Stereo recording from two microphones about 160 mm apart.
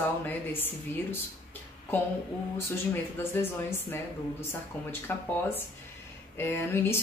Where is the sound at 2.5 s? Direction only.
15° left (ahead or behind).